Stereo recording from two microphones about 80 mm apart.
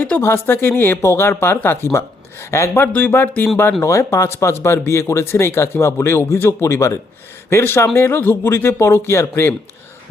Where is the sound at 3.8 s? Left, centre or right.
Left.